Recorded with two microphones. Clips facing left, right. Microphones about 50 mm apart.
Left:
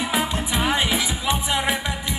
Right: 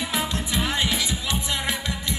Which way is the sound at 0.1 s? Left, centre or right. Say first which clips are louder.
Left 3 dB; left.